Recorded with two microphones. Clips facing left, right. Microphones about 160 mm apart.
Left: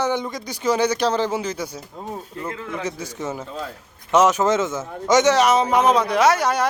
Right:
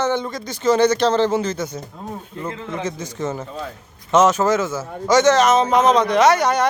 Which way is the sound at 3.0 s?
10° left (ahead or behind).